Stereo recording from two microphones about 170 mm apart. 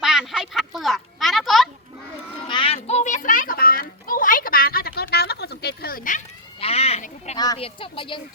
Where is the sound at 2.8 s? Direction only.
45° left (ahead or behind).